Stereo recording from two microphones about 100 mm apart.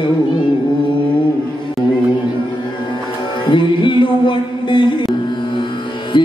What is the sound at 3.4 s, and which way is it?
Music, 50° left (ahead or behind).